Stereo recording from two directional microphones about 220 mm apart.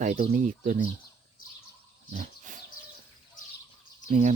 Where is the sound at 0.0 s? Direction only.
35° right (ahead or behind).